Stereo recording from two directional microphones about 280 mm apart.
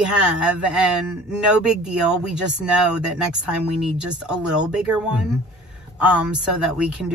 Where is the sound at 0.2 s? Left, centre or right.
Centre.